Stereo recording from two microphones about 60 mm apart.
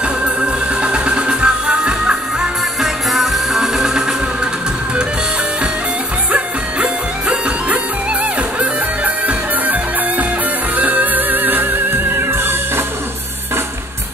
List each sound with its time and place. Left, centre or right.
0.0 s music: centre
2.8 s music: centre
6.3 s music: right